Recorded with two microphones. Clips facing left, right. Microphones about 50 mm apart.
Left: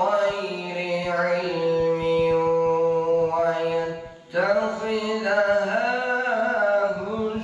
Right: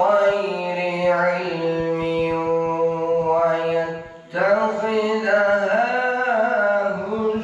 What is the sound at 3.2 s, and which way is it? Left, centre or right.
Mantra, right.